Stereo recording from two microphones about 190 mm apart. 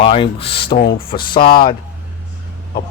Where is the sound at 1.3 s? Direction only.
25° left (ahead or behind).